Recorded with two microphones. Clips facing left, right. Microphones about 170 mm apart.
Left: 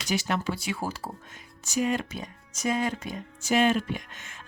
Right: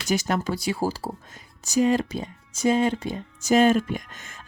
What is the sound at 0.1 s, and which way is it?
Speech, 45° right (ahead or behind).